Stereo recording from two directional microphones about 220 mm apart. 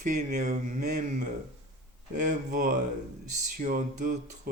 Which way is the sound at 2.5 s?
40° right (ahead or behind).